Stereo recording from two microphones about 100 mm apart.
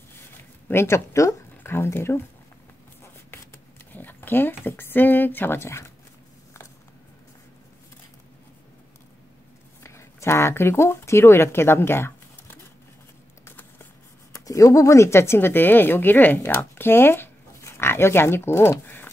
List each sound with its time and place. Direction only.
0.7 s speech: 25° left (ahead or behind)
3.9 s speech: 20° left (ahead or behind)
9.8 s speech: 25° left (ahead or behind)
14.3 s speech: 30° left (ahead or behind)